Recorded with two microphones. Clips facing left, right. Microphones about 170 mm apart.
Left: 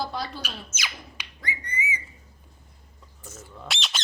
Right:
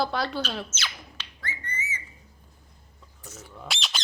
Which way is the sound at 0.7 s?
10° left (ahead or behind).